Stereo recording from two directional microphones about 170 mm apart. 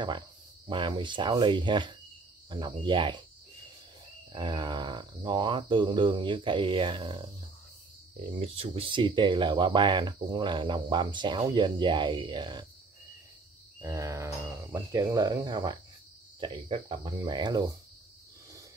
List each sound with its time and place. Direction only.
0.7 s speech: 30° right (ahead or behind)
4.3 s speech: 25° right (ahead or behind)
8.4 s speech: 35° right (ahead or behind)
13.7 s speech: 20° right (ahead or behind)